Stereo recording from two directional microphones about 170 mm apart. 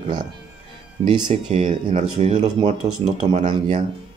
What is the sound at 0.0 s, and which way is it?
Speech, 25° right (ahead or behind).